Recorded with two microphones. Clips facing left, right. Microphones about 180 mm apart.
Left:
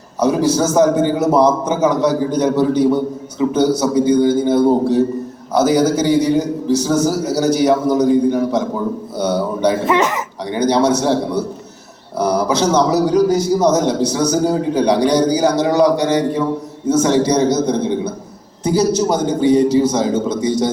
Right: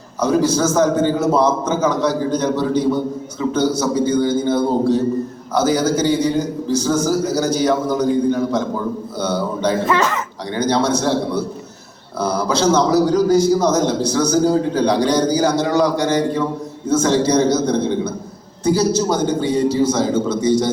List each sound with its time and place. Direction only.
0.2 s a man's voice: 15° left (ahead or behind)